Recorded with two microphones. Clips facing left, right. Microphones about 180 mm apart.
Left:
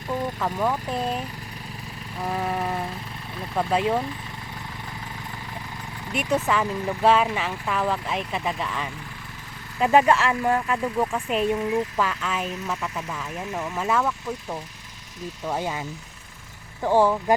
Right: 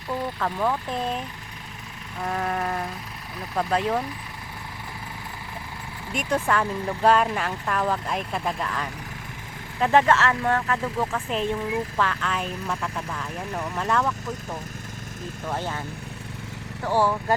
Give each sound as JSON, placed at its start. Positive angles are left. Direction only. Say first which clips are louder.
{"t": 0.3, "sound": "speech", "louder": "right 1 dB", "side_deg": 10}
{"t": 2.2, "sound": "speech", "louder": "even", "side_deg": 5}
{"t": 6.1, "sound": "speech", "louder": "left 1 dB", "side_deg": 5}
{"t": 15.4, "sound": "speech", "louder": "left 2 dB", "side_deg": 10}
{"t": 16.8, "sound": "speech", "louder": "left 3 dB", "side_deg": 15}